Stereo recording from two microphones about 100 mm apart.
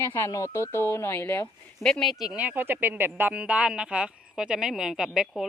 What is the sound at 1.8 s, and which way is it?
Speech, 5° left (ahead or behind).